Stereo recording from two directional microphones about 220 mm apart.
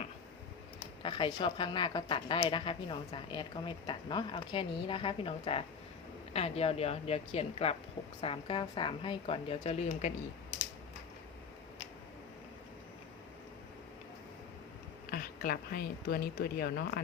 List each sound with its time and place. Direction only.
1.0 s a woman's voice: 20° left (ahead or behind)
15.1 s a woman's voice: 40° left (ahead or behind)